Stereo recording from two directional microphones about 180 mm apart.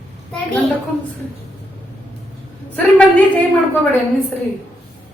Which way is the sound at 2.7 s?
5° left (ahead or behind).